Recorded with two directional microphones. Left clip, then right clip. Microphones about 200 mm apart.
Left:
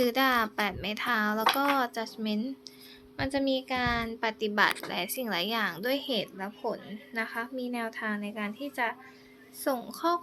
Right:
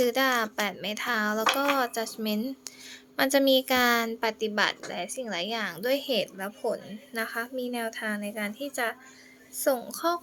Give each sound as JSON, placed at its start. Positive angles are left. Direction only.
{"t": 0.0, "sound": "a woman's voice", "side_deg": 0}
{"t": 3.2, "sound": "a woman's voice", "side_deg": -35}